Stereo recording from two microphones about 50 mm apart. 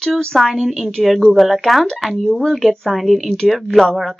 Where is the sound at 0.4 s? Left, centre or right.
Centre.